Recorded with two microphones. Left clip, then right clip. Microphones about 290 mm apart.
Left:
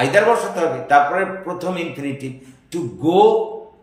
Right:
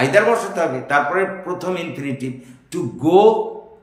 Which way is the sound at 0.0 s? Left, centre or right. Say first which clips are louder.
Even; centre.